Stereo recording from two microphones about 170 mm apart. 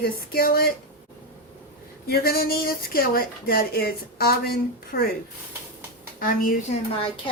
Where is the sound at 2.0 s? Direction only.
65° left (ahead or behind).